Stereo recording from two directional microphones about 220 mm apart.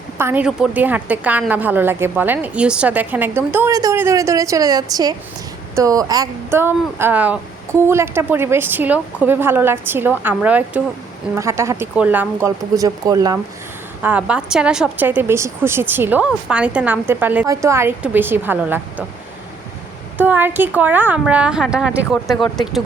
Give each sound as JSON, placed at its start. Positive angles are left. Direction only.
{"t": 0.2, "sound": "speech", "side_deg": -10}
{"t": 14.0, "sound": "speech", "side_deg": -5}
{"t": 20.1, "sound": "speech", "side_deg": -10}
{"t": 22.4, "sound": "speech", "side_deg": 20}